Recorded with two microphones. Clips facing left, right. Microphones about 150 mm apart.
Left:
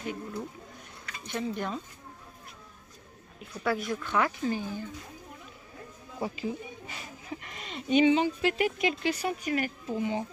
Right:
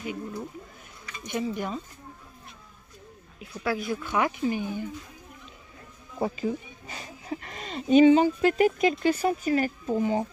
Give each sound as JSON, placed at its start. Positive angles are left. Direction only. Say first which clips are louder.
{"t": 0.0, "sound": "speech", "louder": "right 2 dB", "side_deg": -5}
{"t": 3.3, "sound": "speech", "louder": "right 1 dB", "side_deg": -5}
{"t": 6.1, "sound": "speech", "louder": "right 5 dB", "side_deg": -40}